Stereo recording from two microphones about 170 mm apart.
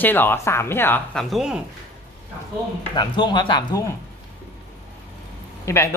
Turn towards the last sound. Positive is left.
turn(degrees=15)  # may be behind; listen again after turning